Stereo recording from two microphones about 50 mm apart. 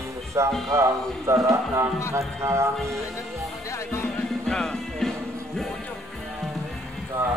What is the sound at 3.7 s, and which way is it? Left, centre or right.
Music, left.